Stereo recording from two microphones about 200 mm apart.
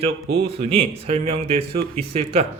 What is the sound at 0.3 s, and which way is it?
Speech, 55° right (ahead or behind).